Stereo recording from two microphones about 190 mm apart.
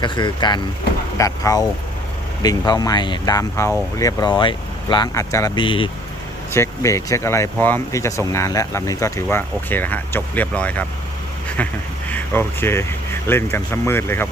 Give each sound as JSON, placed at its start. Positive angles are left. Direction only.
{"t": 0.0, "sound": "speech", "side_deg": 25}
{"t": 6.5, "sound": "speech", "side_deg": 15}
{"t": 12.1, "sound": "speech", "side_deg": 10}